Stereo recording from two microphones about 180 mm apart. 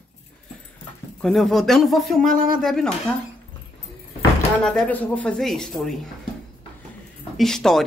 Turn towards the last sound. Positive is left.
turn(degrees=0)  # may be behind; listen again after turning